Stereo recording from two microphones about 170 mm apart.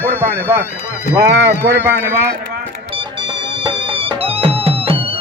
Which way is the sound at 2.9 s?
30° right (ahead or behind).